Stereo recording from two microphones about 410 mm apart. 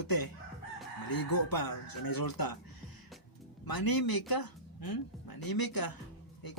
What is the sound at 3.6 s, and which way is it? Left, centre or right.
Speech, left.